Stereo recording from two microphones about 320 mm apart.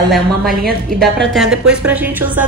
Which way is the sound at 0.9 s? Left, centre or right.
Centre.